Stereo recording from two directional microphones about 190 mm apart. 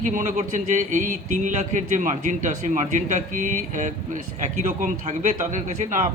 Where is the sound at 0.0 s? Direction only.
40° right (ahead or behind).